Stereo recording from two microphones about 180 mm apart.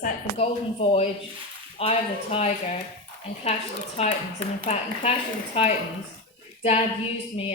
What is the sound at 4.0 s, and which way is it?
Speech, 35° left (ahead or behind).